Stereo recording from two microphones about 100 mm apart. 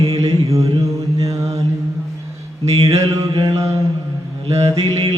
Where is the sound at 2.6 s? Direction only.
90° right.